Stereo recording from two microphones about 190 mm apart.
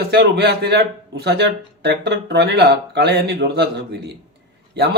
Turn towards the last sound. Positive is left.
turn(degrees=-60)  # may be behind; listen again after turning